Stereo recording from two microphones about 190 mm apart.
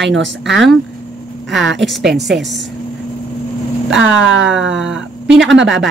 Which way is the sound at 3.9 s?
80° right.